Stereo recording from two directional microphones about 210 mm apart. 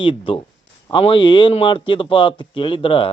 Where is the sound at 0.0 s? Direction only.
25° left (ahead or behind).